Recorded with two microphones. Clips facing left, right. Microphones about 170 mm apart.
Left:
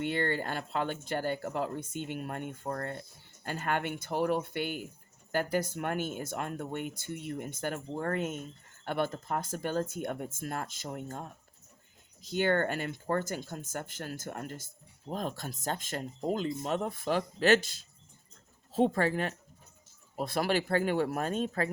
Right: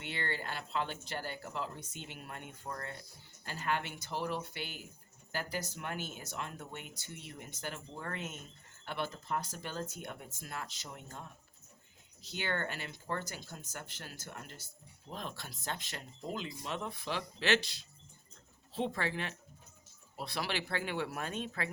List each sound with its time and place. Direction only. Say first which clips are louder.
0.0 s speech: left 9 dB; 50° left (ahead or behind)